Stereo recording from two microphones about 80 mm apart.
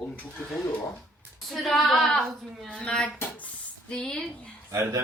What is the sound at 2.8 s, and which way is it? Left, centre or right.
Speech, centre.